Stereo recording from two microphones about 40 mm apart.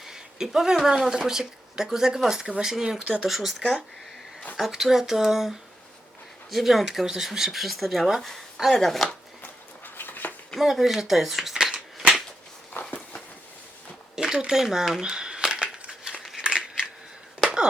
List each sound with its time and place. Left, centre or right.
0.0 s a sound: centre
1.0 s speech: centre
4.5 s speech: centre
9.4 s a sound: left
10.6 s speech: centre
11.5 s shuffling cards: right
14.2 s a sound: centre
14.5 s speech: centre
15.6 s crumpling: right
16.4 s crushing: right
17.4 s wheeze: centre